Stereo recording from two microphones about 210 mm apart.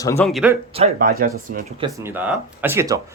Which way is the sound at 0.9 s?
40° right (ahead or behind).